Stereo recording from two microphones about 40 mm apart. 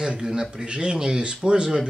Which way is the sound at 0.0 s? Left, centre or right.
Centre.